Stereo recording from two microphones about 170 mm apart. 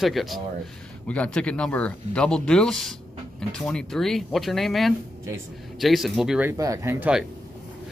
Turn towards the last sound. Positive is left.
turn(degrees=-15)  # may be behind; listen again after turning